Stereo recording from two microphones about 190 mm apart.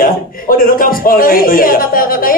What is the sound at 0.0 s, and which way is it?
A woman's voice, 50° left (ahead or behind).